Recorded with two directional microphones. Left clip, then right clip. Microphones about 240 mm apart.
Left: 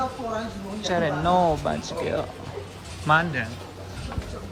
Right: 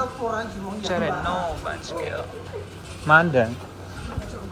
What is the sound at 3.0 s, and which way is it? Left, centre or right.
Speech, centre.